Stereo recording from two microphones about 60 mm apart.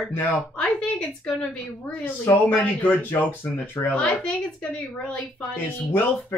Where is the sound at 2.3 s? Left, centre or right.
Left.